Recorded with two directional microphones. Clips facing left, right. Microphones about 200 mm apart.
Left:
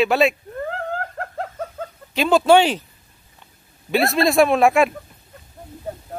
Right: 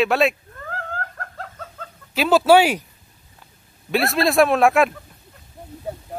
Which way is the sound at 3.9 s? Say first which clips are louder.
Left 1 dB; centre (ahead or behind).